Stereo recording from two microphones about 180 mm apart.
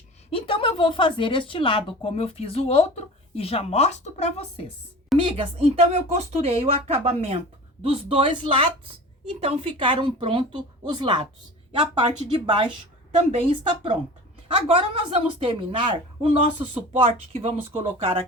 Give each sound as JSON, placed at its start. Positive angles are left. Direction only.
{"t": 0.3, "sound": "speech", "side_deg": 30}
{"t": 5.2, "sound": "a woman's voice", "side_deg": -30}